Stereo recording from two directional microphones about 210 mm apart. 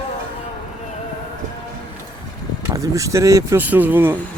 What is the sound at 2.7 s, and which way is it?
Speech, 15° right (ahead or behind).